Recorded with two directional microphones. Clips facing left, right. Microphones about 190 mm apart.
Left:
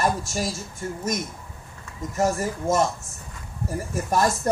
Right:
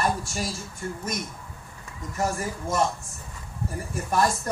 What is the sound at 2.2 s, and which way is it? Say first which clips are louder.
Speech: left 5 dB; 40° left (ahead or behind).